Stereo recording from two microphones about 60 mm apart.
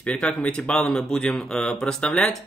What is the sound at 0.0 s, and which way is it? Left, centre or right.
Speech, left.